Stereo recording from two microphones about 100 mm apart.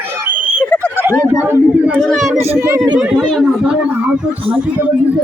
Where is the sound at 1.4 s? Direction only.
15° right (ahead or behind).